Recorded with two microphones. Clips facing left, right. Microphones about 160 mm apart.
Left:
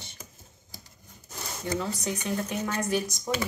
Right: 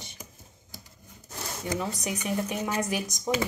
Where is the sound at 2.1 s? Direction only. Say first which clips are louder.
Right 1 dB; 15° right (ahead or behind).